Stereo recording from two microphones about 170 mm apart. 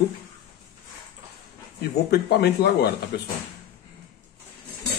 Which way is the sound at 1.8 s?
70° left (ahead or behind).